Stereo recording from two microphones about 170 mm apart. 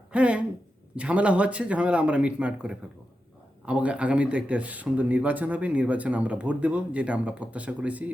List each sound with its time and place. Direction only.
0.1 s speech: 5° right (ahead or behind)